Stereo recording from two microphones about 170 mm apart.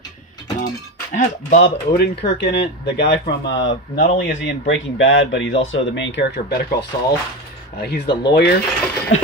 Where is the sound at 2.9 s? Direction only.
85° left.